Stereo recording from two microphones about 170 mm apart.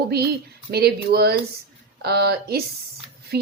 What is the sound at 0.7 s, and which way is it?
A woman's voice, 75° right (ahead or behind).